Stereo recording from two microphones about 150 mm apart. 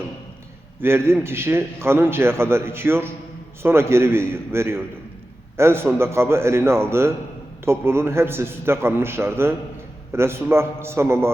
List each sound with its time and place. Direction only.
0.8 s a man's voice: 15° right (ahead or behind)